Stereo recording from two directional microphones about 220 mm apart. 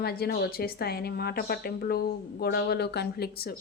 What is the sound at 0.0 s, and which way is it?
Speech, 45° left (ahead or behind).